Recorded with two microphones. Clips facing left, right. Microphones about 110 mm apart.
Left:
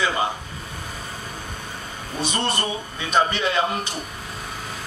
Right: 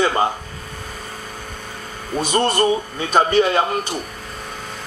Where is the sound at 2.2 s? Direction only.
40° right (ahead or behind).